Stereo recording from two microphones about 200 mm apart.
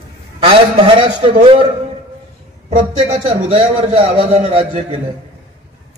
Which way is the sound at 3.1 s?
30° right (ahead or behind).